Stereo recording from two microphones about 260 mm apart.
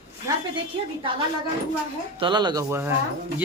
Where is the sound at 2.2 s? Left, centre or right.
Centre.